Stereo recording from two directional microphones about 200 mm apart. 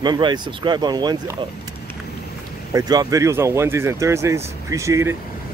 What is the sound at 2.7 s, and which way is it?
Speech, 20° right (ahead or behind).